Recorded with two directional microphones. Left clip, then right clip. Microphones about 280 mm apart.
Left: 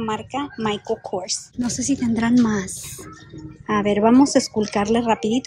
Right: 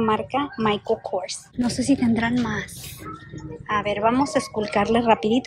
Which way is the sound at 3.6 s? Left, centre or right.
Centre.